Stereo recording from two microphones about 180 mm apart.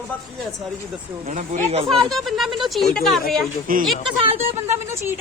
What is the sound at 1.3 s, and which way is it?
Speech, 40° right (ahead or behind).